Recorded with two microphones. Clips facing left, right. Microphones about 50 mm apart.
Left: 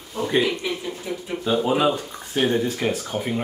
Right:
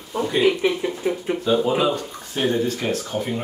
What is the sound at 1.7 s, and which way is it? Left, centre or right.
Speech, centre.